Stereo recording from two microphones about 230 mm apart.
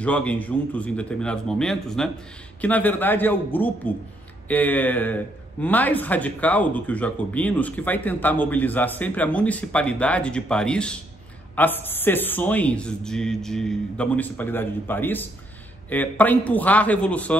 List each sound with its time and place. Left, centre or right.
0.0 s a man's voice: centre